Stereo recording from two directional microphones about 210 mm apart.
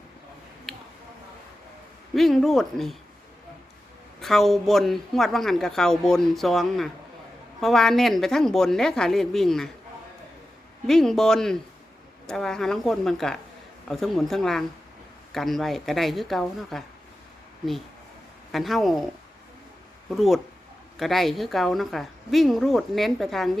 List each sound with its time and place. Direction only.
2.1 s a woman's voice: centre (ahead or behind)
4.2 s a woman's voice: centre (ahead or behind)
10.8 s a woman's voice: centre (ahead or behind)
18.5 s a woman's voice: centre (ahead or behind)
20.1 s a woman's voice: centre (ahead or behind)